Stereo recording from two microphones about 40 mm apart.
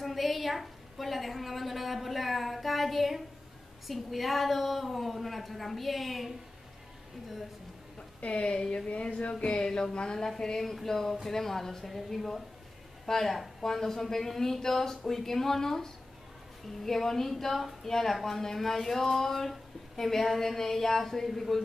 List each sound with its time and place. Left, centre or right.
0.0 s a woman's voice: centre
8.2 s speech: left
9.7 s speech: centre